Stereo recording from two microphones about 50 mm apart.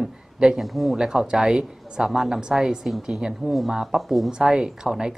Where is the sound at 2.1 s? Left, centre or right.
Centre.